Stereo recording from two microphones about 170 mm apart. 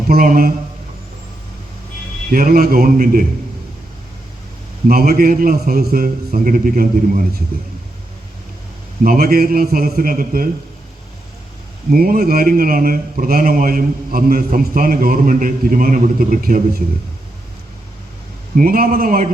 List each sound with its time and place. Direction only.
0.1 s speech: 60° right (ahead or behind)
2.3 s speech: 55° right (ahead or behind)
4.9 s speech: 60° right (ahead or behind)
9.0 s speech: 60° right (ahead or behind)
11.9 s speech: 55° right (ahead or behind)
18.5 s speech: 60° right (ahead or behind)